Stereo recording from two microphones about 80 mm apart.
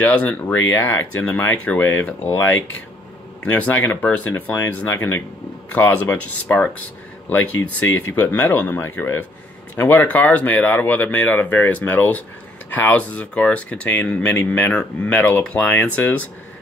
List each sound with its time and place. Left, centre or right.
0.0 s speech: centre
3.4 s speech: centre